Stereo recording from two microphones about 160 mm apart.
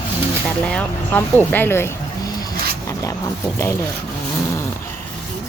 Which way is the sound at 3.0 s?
20° left (ahead or behind).